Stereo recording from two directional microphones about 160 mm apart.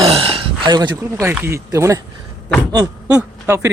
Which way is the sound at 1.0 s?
15° right (ahead or behind).